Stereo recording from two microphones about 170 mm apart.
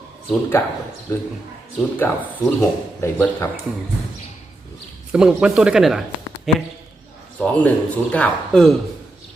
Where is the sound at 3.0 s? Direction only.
15° left (ahead or behind).